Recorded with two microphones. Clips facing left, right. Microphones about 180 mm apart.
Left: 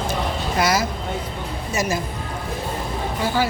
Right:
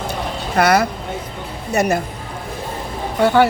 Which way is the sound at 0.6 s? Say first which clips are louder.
Right 7 dB; 60° right (ahead or behind).